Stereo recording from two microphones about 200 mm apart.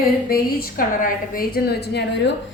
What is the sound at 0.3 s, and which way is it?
A woman's voice, 45° left (ahead or behind).